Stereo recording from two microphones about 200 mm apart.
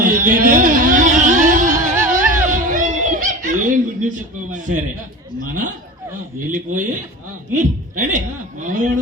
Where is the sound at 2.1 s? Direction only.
40° right (ahead or behind).